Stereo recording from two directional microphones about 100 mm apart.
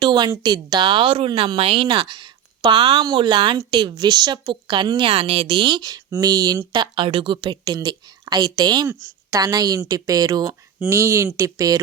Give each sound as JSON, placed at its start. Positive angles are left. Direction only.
{"t": 0.0, "sound": "a woman's voice", "side_deg": -50}
{"t": 3.0, "sound": "a woman's voice", "side_deg": -50}
{"t": 6.9, "sound": "a woman's voice", "side_deg": -60}
{"t": 10.8, "sound": "a woman's voice", "side_deg": -25}